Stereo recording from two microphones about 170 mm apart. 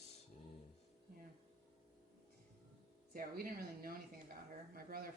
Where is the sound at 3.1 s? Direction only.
60° right (ahead or behind).